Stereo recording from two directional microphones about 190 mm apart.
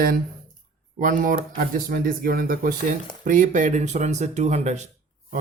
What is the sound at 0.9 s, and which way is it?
Speech, 45° right (ahead or behind).